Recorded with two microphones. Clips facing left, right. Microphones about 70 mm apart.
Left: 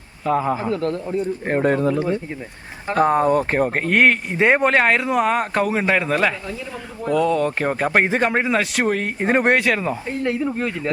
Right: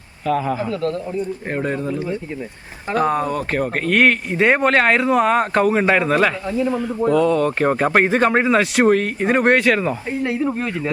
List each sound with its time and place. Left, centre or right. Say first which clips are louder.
0.3 s a man's voice: even; left
1.5 s speech: left 7 dB; left
3.1 s speech: left 3 dB; left
3.8 s speech: right 2 dB; left; by 9.0 s centre
9.0 s speech: right 1 dB; centre
9.4 s speech: right 5 dB; centre